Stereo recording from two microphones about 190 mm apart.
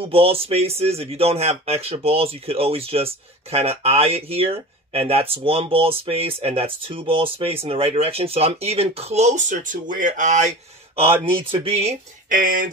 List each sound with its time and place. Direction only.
0.0 s speech: 30° right (ahead or behind)
11.2 s speech: 30° right (ahead or behind)
12.3 s speech: 45° right (ahead or behind)